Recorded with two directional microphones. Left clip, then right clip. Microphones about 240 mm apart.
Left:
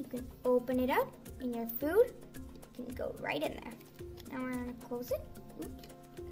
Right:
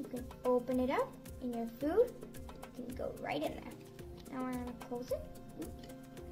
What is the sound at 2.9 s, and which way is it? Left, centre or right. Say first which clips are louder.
Speech: left 2 dB; centre.